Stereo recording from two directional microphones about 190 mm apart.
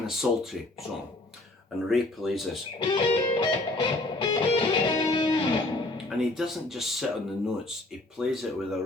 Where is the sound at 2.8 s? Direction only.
25° left (ahead or behind).